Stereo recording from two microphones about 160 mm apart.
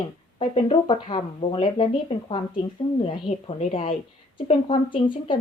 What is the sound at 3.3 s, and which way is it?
Speech, 40° left (ahead or behind).